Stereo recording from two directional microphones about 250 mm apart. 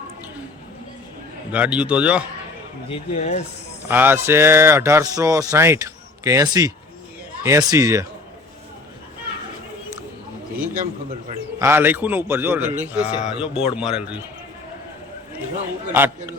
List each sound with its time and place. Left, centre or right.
1.5 s a man's voice: centre
2.9 s speech: left
3.8 s speech: centre
11.6 s a man's voice: centre
15.9 s speech: centre